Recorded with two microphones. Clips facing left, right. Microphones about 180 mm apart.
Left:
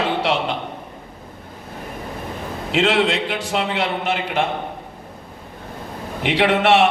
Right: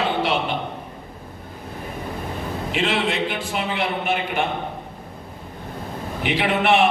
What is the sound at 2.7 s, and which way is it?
A man's voice, 85° left.